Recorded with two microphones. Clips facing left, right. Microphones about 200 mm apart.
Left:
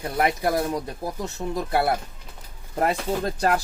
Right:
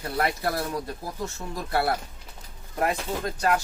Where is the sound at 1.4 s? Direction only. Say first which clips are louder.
Left 7 dB; 30° left (ahead or behind).